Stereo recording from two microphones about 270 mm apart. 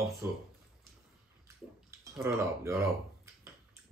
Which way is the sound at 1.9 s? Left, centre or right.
Centre.